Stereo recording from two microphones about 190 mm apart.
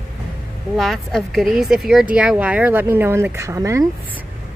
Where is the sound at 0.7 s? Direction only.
Centre (ahead or behind); by 3.8 s 15° right (ahead or behind).